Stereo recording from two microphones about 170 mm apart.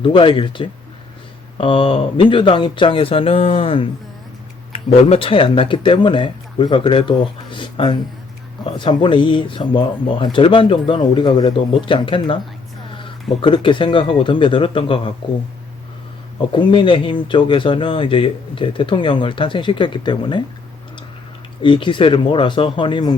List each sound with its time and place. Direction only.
0.0 s speech: 30° left (ahead or behind)
13.4 s speech: 30° left (ahead or behind)
16.5 s speech: 30° left (ahead or behind)
21.6 s speech: 30° left (ahead or behind)